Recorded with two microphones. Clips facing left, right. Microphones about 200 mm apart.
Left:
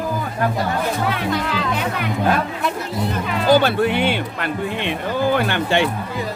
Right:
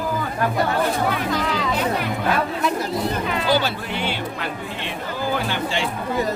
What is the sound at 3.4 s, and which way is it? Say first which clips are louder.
Speech: left 10 dB; 55° left (ahead or behind).